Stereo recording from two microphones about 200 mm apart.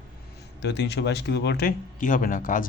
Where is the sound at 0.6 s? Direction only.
60° left (ahead or behind); by 2.6 s 40° left (ahead or behind).